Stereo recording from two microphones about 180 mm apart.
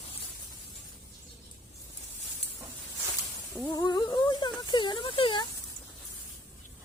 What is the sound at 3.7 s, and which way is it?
Speech, 25° left (ahead or behind).